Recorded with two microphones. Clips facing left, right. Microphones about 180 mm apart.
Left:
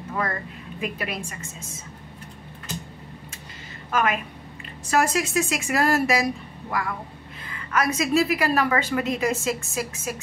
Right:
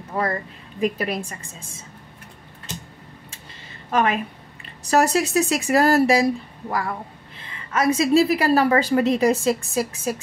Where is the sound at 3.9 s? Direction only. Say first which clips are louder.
Right 3 dB; 30° right (ahead or behind).